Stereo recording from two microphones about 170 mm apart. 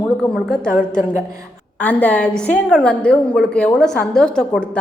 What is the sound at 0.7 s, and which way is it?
Speech, 50° left (ahead or behind).